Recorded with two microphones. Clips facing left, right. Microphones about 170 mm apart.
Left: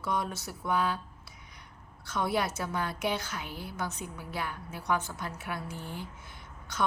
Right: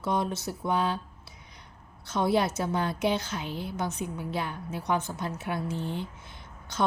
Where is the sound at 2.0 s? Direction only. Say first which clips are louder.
Right 5 dB; 25° right (ahead or behind).